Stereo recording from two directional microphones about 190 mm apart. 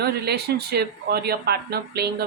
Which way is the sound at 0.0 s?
60° right (ahead or behind).